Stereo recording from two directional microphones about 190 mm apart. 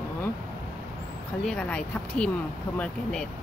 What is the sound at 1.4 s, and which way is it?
Speech, 5° left (ahead or behind).